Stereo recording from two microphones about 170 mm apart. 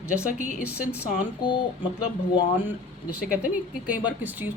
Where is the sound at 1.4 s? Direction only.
30° left (ahead or behind).